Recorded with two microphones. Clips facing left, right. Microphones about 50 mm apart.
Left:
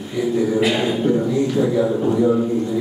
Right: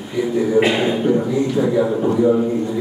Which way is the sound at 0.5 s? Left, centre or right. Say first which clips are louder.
Right 3 dB; right.